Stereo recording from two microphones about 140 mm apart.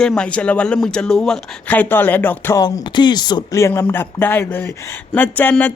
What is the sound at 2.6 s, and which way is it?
Speech, 30° left (ahead or behind).